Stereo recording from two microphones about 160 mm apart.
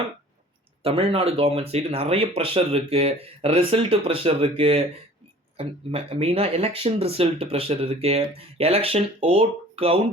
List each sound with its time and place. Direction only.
0.8 s speech: 35° right (ahead or behind)